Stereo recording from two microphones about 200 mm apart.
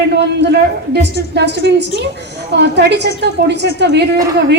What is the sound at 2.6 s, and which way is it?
A woman's voice, 55° right (ahead or behind).